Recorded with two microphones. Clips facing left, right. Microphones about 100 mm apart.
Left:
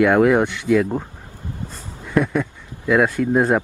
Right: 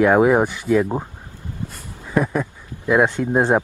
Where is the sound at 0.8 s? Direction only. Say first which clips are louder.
Even; 20° right (ahead or behind).